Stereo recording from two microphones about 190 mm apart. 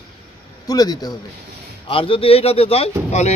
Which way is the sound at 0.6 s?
20° left (ahead or behind).